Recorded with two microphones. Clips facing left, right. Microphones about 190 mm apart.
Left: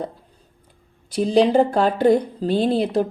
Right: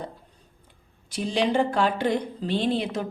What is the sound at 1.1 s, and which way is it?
A woman's voice, 35° left (ahead or behind).